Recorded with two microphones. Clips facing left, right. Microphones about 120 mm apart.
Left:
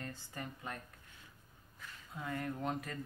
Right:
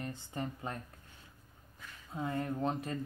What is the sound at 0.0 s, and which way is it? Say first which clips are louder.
Speech: right 6 dB; 20° right (ahead or behind).